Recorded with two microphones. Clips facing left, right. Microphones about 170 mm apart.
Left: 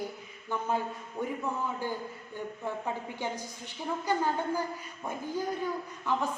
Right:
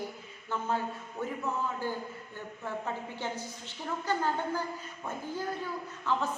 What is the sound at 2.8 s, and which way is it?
A woman's voice, 15° left (ahead or behind).